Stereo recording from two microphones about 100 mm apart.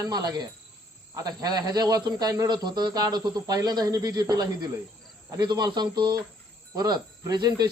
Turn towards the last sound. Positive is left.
turn(degrees=-40)  # may be behind; listen again after turning